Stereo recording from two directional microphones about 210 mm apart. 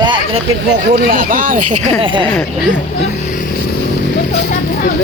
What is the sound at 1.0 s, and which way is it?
Speech, 40° right (ahead or behind).